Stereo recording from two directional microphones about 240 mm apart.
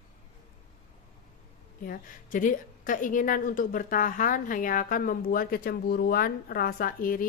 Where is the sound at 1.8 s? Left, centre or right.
Left.